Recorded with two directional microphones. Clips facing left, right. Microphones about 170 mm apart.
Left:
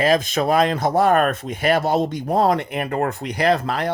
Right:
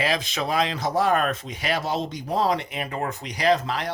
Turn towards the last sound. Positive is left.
turn(degrees=55)  # may be behind; listen again after turning